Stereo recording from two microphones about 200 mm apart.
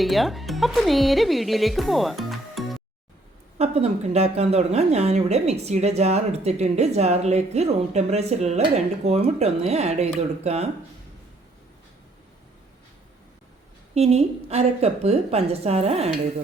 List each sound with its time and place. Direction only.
0.0 s speech: centre (ahead or behind)
3.6 s a woman's voice: 30° right (ahead or behind)
13.9 s a woman's voice: 30° right (ahead or behind)